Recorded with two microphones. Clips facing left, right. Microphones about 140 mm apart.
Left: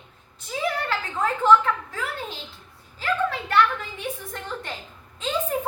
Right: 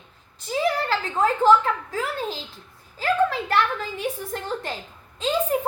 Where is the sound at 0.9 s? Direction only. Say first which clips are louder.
Right 4 dB; 35° right (ahead or behind).